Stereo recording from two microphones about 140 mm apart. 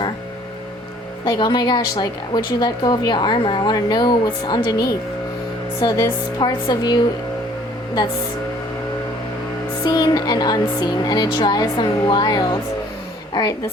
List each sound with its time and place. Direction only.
1.2 s a woman's voice: 30° left (ahead or behind)
9.8 s a woman's voice: 30° left (ahead or behind)